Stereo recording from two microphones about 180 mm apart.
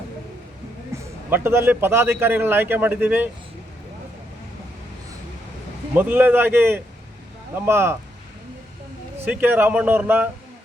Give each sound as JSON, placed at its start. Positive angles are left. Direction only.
{"t": 0.9, "sound": "a sound", "side_deg": -15}
{"t": 1.3, "sound": "a man's voice", "side_deg": -10}
{"t": 5.9, "sound": "a man's voice", "side_deg": -10}
{"t": 9.2, "sound": "a man's voice", "side_deg": -10}